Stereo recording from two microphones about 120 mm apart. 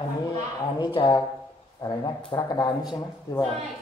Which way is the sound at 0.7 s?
40° left (ahead or behind).